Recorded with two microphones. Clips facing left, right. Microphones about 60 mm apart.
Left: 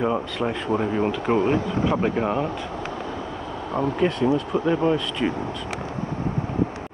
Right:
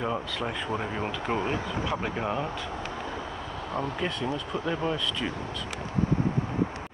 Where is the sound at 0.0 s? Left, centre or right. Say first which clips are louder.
Left 7 dB; centre.